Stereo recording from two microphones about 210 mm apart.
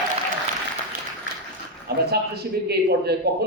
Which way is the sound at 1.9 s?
50° right (ahead or behind).